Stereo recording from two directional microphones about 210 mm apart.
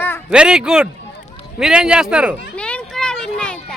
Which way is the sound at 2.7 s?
5° left (ahead or behind).